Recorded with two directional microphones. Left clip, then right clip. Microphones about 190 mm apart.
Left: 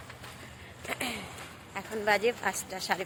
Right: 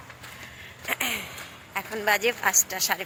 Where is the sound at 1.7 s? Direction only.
10° right (ahead or behind).